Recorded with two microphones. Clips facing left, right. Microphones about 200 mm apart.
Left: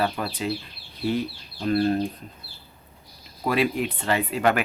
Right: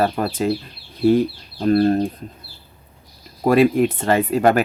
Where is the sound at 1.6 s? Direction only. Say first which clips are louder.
Right 6 dB; 45° right (ahead or behind).